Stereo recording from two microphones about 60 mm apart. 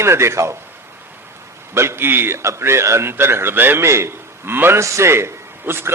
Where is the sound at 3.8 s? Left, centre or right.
Right.